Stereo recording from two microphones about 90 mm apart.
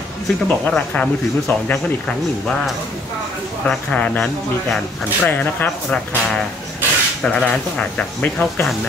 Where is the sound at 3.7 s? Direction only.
10° left (ahead or behind).